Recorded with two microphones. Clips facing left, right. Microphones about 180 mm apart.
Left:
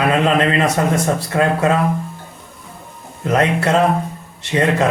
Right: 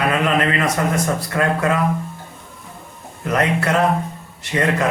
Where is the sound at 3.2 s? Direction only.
25° left (ahead or behind).